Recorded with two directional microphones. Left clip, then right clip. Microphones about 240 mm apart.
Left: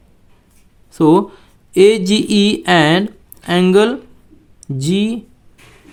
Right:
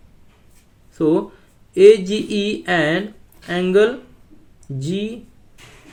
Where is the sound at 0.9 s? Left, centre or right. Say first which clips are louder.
Left 6 dB; left.